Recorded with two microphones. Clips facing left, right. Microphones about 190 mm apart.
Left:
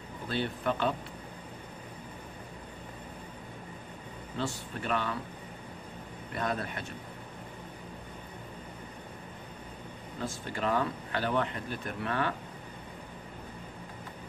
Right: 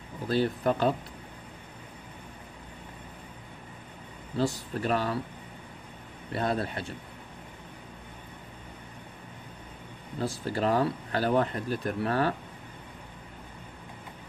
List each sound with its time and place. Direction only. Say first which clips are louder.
0.3 s speech: right 6 dB; 40° right (ahead or behind)
4.4 s speech: right 7 dB; 40° right (ahead or behind)
6.3 s speech: right 4 dB; 30° right (ahead or behind)
10.1 s speech: right 6 dB; 35° right (ahead or behind)